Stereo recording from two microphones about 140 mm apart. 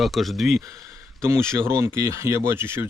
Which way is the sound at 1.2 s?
20° right (ahead or behind).